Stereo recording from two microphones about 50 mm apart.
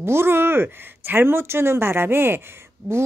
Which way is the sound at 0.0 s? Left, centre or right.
Right.